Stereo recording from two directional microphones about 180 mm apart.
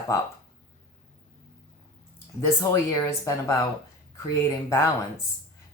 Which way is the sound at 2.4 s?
15° left (ahead or behind).